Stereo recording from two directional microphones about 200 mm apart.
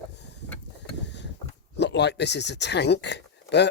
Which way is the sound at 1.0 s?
60° left (ahead or behind).